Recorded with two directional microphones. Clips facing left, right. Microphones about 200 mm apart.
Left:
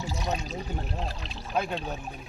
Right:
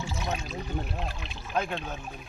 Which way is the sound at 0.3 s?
40° left (ahead or behind).